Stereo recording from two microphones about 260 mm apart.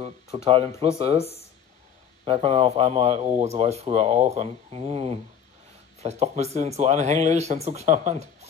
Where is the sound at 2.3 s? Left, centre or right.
Right.